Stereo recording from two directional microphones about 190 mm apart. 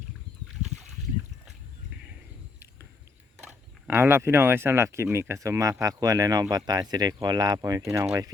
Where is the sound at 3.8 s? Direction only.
10° right (ahead or behind).